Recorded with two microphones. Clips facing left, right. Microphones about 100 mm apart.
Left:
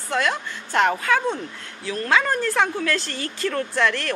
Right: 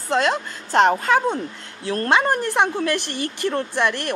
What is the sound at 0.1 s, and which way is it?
A woman's voice, 30° right (ahead or behind).